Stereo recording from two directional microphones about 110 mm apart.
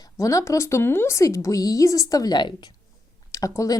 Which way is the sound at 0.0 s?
30° left (ahead or behind).